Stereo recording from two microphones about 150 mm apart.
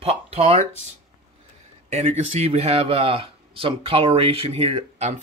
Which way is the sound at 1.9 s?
45° right (ahead or behind).